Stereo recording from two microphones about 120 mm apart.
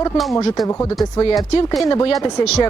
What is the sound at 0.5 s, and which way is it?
Speech, 25° left (ahead or behind).